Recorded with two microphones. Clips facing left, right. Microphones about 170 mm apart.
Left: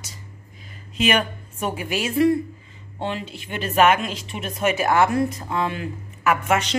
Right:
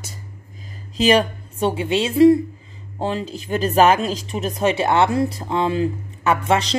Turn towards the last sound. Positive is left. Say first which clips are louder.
# right 2 dB
turn(degrees=-30)  # may be behind; listen again after turning